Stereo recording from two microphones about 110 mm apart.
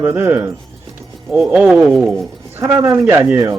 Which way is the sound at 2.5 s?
20° right (ahead or behind).